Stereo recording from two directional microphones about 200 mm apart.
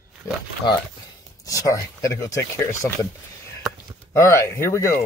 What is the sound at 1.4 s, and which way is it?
Speech, 15° left (ahead or behind).